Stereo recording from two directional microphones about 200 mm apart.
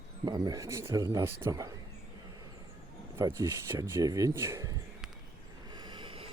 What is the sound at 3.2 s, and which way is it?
Speech, 15° right (ahead or behind).